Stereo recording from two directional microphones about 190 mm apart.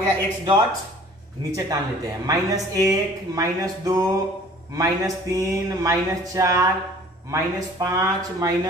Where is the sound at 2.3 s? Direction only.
15° right (ahead or behind).